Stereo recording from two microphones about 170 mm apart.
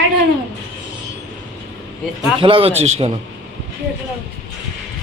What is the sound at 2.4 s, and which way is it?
Speech, 30° right (ahead or behind).